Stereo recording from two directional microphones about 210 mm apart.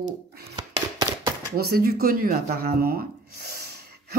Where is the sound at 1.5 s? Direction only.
45° right (ahead or behind).